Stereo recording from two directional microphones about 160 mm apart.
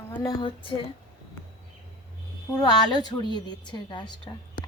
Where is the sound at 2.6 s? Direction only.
25° left (ahead or behind).